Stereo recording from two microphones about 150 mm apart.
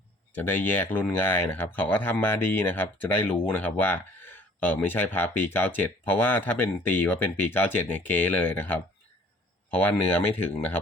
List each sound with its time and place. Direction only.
0.3 s speech: 15° left (ahead or behind)